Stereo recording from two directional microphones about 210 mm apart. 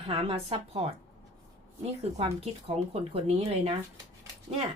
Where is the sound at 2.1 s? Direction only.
30° right (ahead or behind).